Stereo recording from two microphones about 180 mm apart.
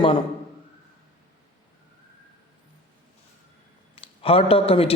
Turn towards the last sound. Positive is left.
turn(degrees=35)  # may be behind; listen again after turning